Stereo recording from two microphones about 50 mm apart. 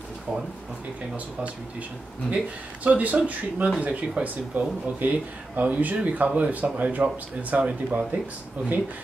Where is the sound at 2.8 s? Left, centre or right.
Right.